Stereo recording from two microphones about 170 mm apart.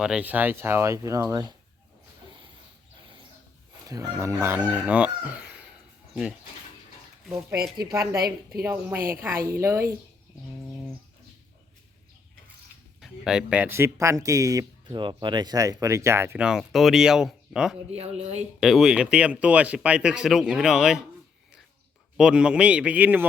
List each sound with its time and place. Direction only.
0.0 s speech: 5° right (ahead or behind); by 1.5 s 20° right (ahead or behind)
3.8 s speech: 20° right (ahead or behind)
7.8 s a woman's voice: 20° right (ahead or behind)
8.6 s speech: 10° right (ahead or behind)
9.0 s a woman's voice: 55° right (ahead or behind)
9.4 s speech: 15° right (ahead or behind)
13.0 s speech: 5° right (ahead or behind)
17.9 s a woman's voice: 40° right (ahead or behind)
18.6 s speech: centre (ahead or behind)
22.2 s speech: 5° right (ahead or behind)